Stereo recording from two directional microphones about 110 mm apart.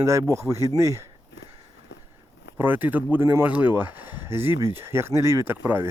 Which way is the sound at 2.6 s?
15° right (ahead or behind).